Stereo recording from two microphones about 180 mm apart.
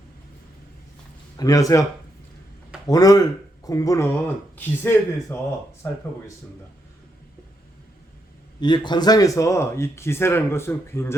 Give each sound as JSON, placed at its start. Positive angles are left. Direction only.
{"t": 1.4, "sound": "speech", "side_deg": 20}
{"t": 2.8, "sound": "speech", "side_deg": 20}
{"t": 8.6, "sound": "speech", "side_deg": 25}